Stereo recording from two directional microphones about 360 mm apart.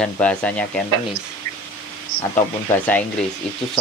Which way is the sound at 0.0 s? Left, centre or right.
Centre.